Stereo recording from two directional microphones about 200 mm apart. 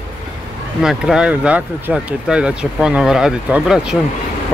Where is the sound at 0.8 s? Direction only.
5° right (ahead or behind).